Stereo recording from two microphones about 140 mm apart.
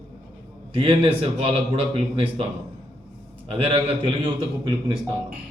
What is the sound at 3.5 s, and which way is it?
A man's voice, 45° right (ahead or behind).